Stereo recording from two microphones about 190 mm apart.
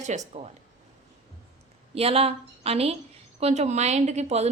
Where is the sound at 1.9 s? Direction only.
30° right (ahead or behind).